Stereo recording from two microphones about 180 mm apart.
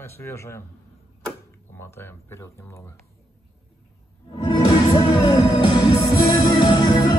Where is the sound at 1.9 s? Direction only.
15° left (ahead or behind).